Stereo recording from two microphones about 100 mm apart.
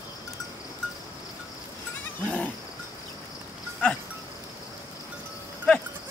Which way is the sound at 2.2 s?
15° left (ahead or behind).